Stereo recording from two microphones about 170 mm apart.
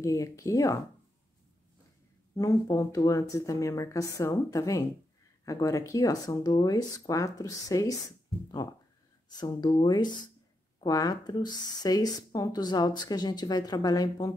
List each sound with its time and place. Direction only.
0.0 s speech: 20° left (ahead or behind)
2.3 s speech: 20° left (ahead or behind)
9.3 s speech: 25° left (ahead or behind)